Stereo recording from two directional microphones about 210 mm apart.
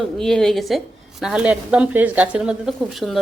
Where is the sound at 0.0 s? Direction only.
Centre (ahead or behind).